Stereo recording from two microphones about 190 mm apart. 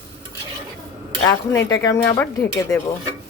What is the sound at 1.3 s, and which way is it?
Speech, 20° left (ahead or behind).